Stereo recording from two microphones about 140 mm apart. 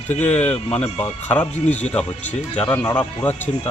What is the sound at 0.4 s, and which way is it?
Speech, 10° left (ahead or behind).